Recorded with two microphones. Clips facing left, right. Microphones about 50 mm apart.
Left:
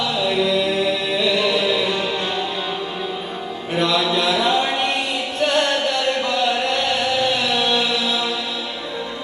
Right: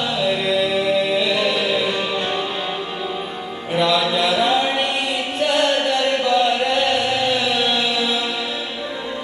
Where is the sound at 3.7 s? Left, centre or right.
Right.